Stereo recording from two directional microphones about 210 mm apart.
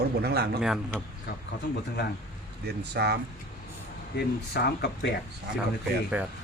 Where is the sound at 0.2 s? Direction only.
50° right (ahead or behind).